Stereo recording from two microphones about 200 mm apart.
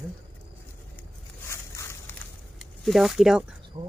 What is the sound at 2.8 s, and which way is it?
Speech, centre (ahead or behind).